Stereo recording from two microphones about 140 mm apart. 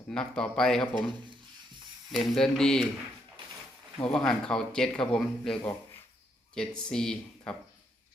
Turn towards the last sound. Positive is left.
turn(degrees=5)  # may be behind; listen again after turning